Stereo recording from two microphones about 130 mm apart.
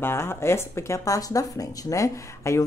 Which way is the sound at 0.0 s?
20° left (ahead or behind).